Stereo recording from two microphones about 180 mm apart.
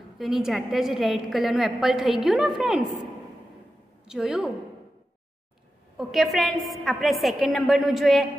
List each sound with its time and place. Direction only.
0.2 s a woman's voice: centre (ahead or behind)
4.1 s a woman's voice: 5° right (ahead or behind)
5.9 s a woman's voice: centre (ahead or behind)